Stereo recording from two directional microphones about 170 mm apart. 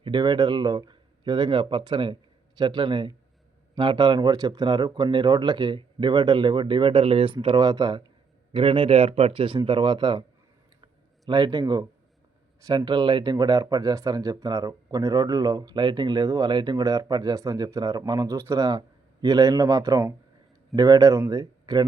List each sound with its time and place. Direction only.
0.0 s speech: 30° right (ahead or behind)
11.3 s speech: 25° right (ahead or behind)